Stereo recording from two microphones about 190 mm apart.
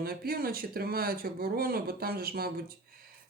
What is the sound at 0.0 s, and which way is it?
Speech, 50° right (ahead or behind).